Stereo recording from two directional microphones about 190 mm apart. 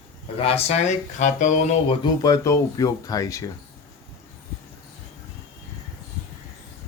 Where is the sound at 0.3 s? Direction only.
30° left (ahead or behind).